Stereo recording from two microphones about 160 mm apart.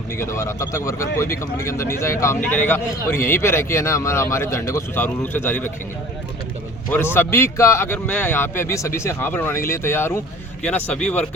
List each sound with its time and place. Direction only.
0.2 s speech: 15° left (ahead or behind)
6.9 s speech: 15° left (ahead or behind)